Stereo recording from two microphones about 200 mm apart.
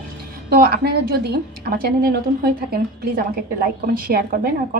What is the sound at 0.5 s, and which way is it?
A woman's voice, 50° right (ahead or behind).